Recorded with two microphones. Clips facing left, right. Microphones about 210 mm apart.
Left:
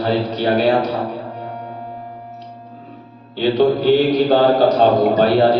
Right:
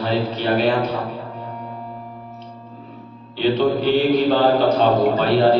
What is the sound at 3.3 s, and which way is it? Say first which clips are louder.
A man's voice: left 3 dB; 40° left (ahead or behind).